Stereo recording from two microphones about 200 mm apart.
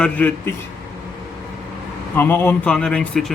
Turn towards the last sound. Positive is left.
turn(degrees=5)  # may be behind; listen again after turning